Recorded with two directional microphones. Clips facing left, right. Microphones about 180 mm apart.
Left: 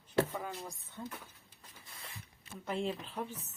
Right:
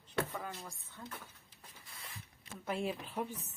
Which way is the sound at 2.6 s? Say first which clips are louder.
Left 1 dB; 5° right (ahead or behind).